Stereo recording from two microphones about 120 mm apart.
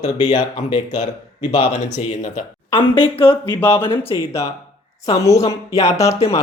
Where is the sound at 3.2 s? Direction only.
50° left (ahead or behind).